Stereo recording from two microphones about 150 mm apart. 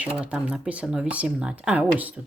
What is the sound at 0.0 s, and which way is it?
Speech, 10° right (ahead or behind).